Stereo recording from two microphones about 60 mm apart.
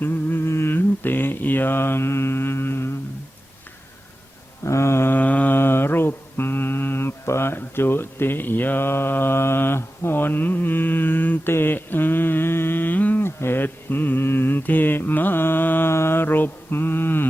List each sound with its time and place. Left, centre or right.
0.0 s mantra: left
4.6 s mantra: left
5.1 s a sound: left
5.5 s mantra: left
13.2 s mantra: left
15.9 s mantra: left